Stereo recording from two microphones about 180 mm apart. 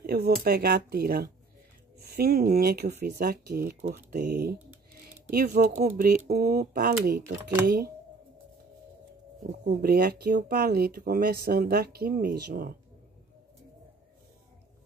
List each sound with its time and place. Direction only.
0.4 s speech: 60° right (ahead or behind)
9.8 s speech: 60° right (ahead or behind)